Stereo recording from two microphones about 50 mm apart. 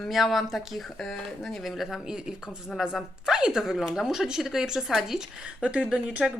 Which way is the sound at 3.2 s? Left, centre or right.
Centre.